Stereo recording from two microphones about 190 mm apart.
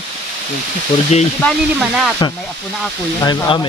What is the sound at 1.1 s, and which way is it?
Speech, 35° left (ahead or behind).